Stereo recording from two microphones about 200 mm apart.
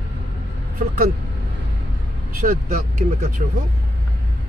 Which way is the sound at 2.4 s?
45° right (ahead or behind).